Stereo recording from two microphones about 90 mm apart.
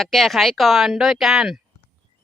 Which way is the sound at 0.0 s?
Centre (ahead or behind).